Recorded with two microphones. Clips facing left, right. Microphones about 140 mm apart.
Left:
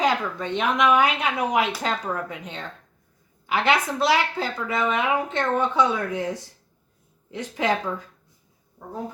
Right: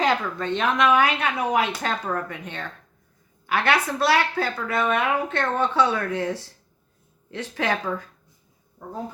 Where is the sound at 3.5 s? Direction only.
20° left (ahead or behind).